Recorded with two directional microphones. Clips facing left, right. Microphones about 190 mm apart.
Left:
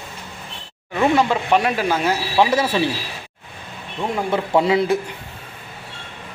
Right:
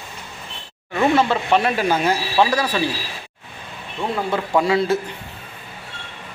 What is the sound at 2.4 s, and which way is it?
Speech, 20° left (ahead or behind).